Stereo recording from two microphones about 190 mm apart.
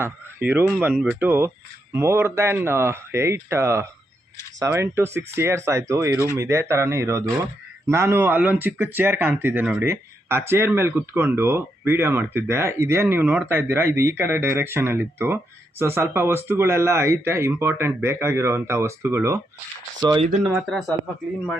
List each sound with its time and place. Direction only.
0.0 s speech: 10° right (ahead or behind)
20.5 s speech: centre (ahead or behind)